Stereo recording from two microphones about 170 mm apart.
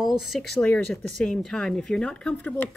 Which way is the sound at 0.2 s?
Centre (ahead or behind).